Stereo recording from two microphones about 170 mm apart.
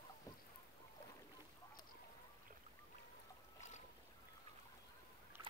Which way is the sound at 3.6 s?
45° left (ahead or behind).